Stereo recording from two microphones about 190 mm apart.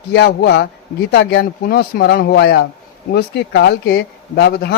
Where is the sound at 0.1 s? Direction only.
60° left (ahead or behind).